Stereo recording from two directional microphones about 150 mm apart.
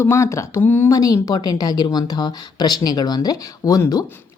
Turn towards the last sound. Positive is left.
turn(degrees=20)  # may be behind; listen again after turning